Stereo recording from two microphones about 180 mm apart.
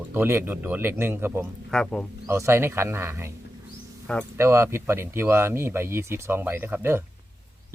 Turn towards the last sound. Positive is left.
turn(degrees=-10)  # may be behind; listen again after turning